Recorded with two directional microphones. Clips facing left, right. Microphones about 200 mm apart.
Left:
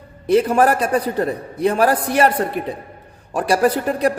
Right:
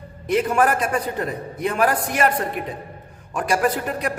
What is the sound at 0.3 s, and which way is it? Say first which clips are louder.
Speech: left 4 dB; 35° left (ahead or behind).